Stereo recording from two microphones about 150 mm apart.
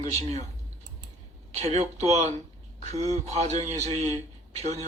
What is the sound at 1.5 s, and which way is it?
Speech, 45° right (ahead or behind).